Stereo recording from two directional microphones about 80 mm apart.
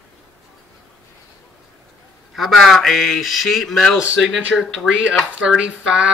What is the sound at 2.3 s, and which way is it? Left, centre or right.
A man's voice, centre.